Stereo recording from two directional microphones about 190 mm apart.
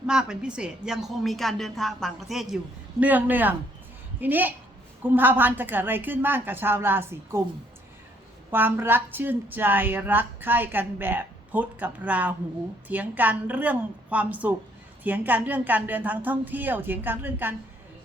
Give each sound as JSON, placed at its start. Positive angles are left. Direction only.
{"t": 0.1, "sound": "a woman's voice", "side_deg": -5}
{"t": 8.4, "sound": "a woman's voice", "side_deg": -10}